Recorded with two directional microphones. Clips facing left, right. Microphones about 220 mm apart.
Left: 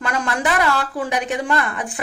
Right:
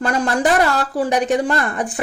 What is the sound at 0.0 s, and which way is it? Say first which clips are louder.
A woman's voice: right 5 dB; 35° right (ahead or behind).